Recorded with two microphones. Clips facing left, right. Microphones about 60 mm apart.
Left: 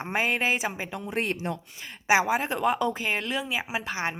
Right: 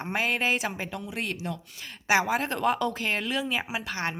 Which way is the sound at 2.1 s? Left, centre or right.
Centre.